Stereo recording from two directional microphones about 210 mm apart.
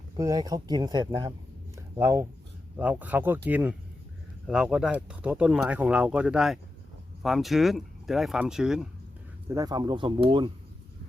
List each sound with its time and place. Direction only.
0.2 s speech: 15° right (ahead or behind)
1.7 s a sound: 15° right (ahead or behind)
2.7 s speech: 10° right (ahead or behind)
9.5 s speech: 15° right (ahead or behind)